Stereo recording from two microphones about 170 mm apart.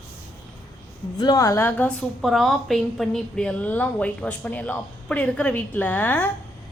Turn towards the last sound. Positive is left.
turn(degrees=10)  # may be behind; listen again after turning